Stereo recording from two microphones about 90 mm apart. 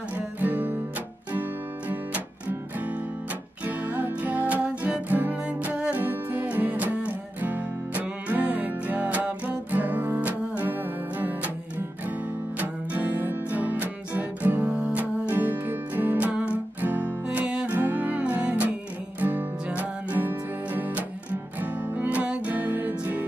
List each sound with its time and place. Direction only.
0.4 s music: 20° right (ahead or behind)
3.6 s music: 20° right (ahead or behind)
12.5 s music: 20° right (ahead or behind)